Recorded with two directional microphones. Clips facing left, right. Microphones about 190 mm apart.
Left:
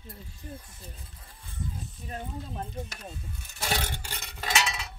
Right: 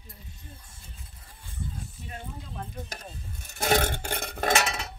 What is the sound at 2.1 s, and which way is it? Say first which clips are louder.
Speech: left 6 dB; 35° left (ahead or behind).